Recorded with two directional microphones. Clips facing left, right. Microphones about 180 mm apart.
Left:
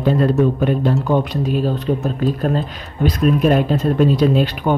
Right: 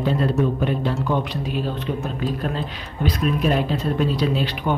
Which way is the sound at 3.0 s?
45° left (ahead or behind).